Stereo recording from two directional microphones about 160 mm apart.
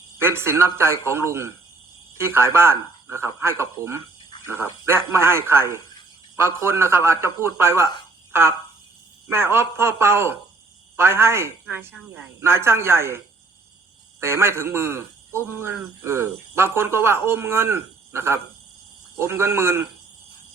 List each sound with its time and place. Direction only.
0.2 s speech: 15° right (ahead or behind)